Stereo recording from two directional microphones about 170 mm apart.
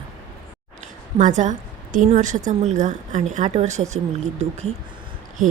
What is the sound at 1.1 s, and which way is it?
A woman's voice, 50° right (ahead or behind).